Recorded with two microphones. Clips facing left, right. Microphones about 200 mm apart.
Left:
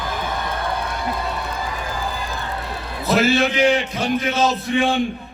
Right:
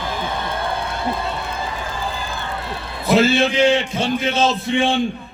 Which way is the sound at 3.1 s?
25° right (ahead or behind).